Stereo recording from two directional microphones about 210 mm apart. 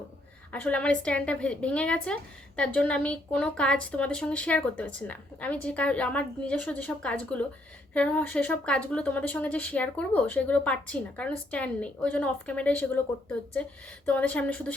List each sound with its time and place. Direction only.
0.5 s speech: 5° left (ahead or behind)